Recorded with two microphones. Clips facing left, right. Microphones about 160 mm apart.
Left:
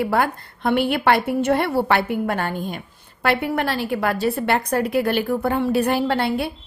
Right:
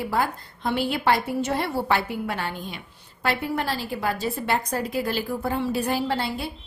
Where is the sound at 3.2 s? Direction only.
65° left (ahead or behind).